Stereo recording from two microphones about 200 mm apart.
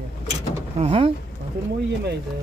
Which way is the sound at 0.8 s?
30° right (ahead or behind).